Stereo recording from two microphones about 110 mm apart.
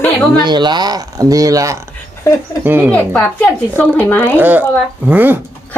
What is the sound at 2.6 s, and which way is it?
Speech, 20° right (ahead or behind).